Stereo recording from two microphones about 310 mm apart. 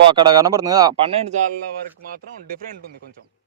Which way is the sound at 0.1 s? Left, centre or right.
Centre.